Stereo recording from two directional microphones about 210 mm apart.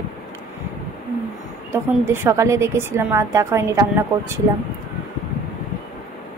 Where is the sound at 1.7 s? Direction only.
10° right (ahead or behind).